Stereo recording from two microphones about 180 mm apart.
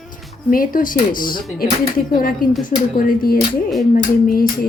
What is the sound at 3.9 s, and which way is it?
Speech, 50° left (ahead or behind).